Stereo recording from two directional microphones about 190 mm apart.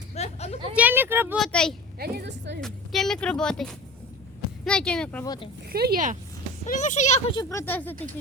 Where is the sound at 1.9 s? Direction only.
55° right (ahead or behind).